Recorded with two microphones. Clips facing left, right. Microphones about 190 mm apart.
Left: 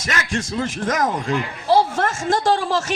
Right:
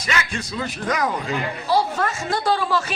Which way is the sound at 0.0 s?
45° left (ahead or behind).